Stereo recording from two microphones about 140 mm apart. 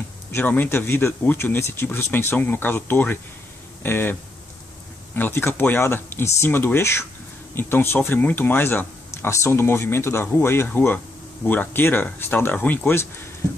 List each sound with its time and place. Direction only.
0.3 s speech: 10° left (ahead or behind)